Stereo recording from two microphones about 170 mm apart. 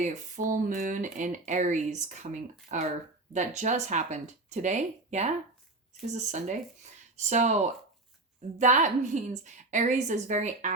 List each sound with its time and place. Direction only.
0.0 s speech: 45° right (ahead or behind)